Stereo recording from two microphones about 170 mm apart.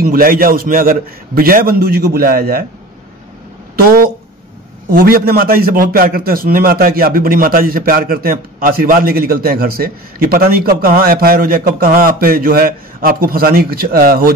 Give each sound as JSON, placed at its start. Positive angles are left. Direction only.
{"t": 0.0, "sound": "a man's voice", "side_deg": -60}
{"t": 3.7, "sound": "a man's voice", "side_deg": -65}